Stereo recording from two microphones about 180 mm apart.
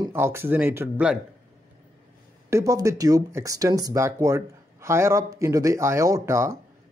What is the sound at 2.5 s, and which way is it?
Speech, 15° right (ahead or behind).